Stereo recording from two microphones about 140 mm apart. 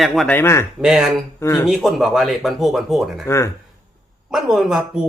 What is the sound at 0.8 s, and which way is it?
Speech, 5° right (ahead or behind).